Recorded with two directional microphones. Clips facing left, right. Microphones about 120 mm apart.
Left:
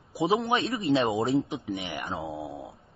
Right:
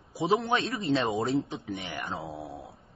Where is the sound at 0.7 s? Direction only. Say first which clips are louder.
Left 3 dB; centre (ahead or behind).